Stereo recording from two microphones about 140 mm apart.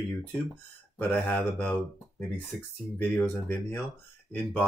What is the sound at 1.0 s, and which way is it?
Speech, 10° left (ahead or behind).